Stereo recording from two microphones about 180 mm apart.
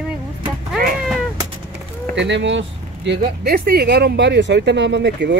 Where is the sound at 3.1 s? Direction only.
55° right (ahead or behind).